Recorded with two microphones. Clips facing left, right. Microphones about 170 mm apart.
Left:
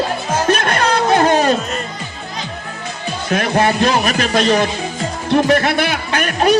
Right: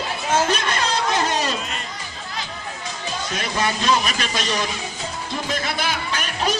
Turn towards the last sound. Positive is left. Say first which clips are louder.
# left 10 dB
turn(degrees=65)  # may be behind; listen again after turning